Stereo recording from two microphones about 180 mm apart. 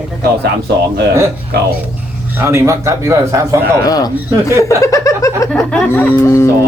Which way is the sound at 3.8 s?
20° left (ahead or behind).